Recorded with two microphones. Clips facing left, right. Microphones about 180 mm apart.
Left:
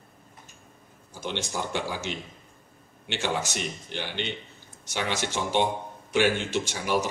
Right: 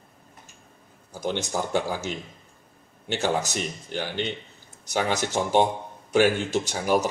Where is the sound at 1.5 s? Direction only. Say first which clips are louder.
Right 5 dB; 45° right (ahead or behind).